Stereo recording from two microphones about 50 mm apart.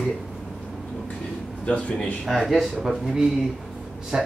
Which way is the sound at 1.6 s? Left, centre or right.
Left.